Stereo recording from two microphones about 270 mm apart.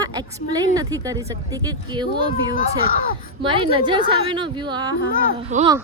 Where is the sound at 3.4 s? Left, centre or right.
Centre.